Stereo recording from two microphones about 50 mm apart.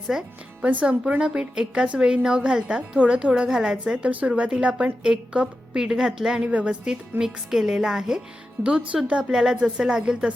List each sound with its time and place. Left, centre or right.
0.1 s a woman's voice: centre
0.6 s a woman's voice: right
7.5 s a woman's voice: centre
8.6 s a woman's voice: right